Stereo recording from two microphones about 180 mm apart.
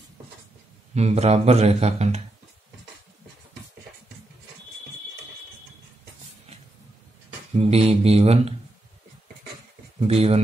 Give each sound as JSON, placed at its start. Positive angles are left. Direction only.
{"t": 0.9, "sound": "speech", "side_deg": -35}
{"t": 7.5, "sound": "speech", "side_deg": -35}
{"t": 9.9, "sound": "speech", "side_deg": -35}